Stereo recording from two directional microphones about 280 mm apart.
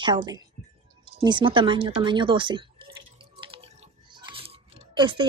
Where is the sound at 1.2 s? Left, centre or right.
Centre.